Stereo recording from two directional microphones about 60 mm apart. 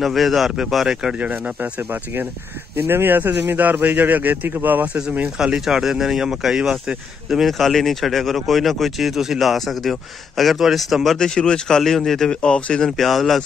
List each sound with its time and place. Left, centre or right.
0.0 s speech: centre
1.1 s speech: right
1.8 s a man's voice: right
5.4 s speech: centre
7.2 s speech: centre
11.1 s speech: centre
12.3 s speech: centre
12.9 s speech: centre